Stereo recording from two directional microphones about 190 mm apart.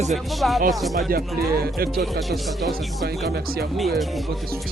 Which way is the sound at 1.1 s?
55° right (ahead or behind).